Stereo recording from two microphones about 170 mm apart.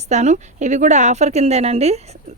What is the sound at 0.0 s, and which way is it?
A woman's voice, 45° right (ahead or behind).